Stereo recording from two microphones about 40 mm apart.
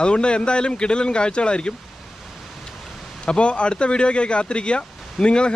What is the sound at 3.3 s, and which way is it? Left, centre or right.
Speech, left.